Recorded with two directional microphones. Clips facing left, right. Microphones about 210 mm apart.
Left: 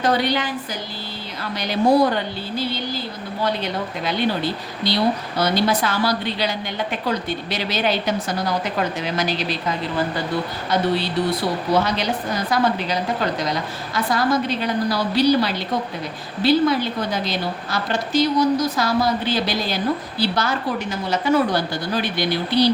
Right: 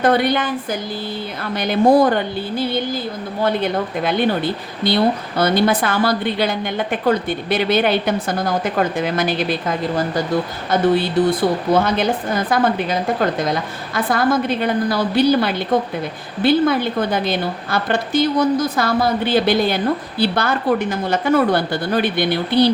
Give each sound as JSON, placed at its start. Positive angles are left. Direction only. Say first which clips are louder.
{"t": 0.0, "sound": "a woman's voice", "louder": "right 4 dB", "side_deg": -55}